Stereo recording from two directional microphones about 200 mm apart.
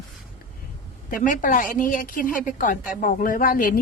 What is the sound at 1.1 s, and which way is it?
A woman's voice, 40° left (ahead or behind).